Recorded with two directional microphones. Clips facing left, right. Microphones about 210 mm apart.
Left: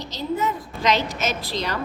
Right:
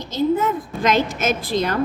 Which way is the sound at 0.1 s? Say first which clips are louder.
Right 7 dB; 50° right (ahead or behind).